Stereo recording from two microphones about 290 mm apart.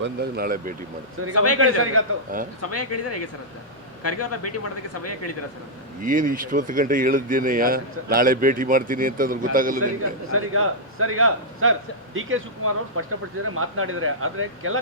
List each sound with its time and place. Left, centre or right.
0.0 s speech: right
1.5 s a man's voice: right
2.6 s speech: left
6.0 s speech: right
10.3 s a man's voice: right